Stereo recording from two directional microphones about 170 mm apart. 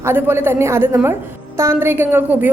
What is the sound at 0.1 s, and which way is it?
A woman's voice, 15° right (ahead or behind).